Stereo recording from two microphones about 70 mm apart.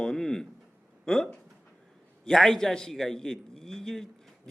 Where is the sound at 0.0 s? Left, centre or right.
Centre.